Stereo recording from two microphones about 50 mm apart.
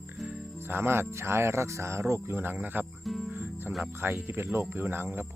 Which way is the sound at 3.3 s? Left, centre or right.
Right.